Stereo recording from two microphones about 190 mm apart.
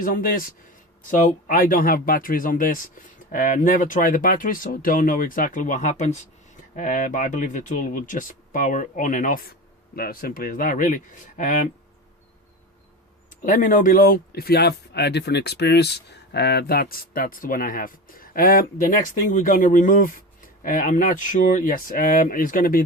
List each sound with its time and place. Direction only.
0.0 s speech: 50° left (ahead or behind)
13.3 s speech: 45° left (ahead or behind)